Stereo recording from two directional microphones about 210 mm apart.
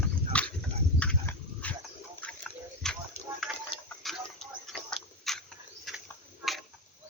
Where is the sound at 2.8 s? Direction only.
Centre (ahead or behind).